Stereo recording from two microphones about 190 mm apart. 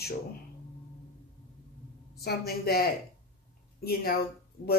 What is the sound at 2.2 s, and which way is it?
Speech, 55° left (ahead or behind).